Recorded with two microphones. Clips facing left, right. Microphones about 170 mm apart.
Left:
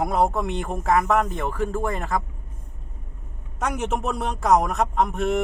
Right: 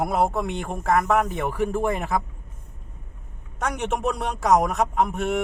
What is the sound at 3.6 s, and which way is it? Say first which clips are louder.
Speech: even; centre (ahead or behind).